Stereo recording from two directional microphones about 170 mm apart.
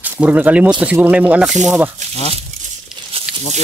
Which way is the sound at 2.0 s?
45° right (ahead or behind).